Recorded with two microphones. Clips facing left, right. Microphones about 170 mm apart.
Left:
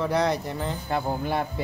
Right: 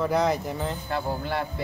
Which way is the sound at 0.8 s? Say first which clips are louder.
Left 2 dB; 20° left (ahead or behind).